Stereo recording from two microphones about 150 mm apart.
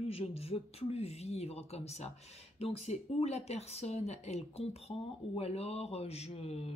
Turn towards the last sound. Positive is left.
turn(degrees=45)  # may be behind; listen again after turning